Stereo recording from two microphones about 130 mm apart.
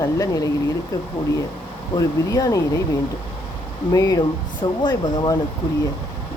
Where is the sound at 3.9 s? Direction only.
25° left (ahead or behind).